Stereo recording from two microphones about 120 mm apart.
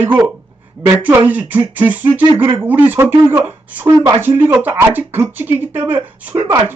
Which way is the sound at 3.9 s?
30° right (ahead or behind).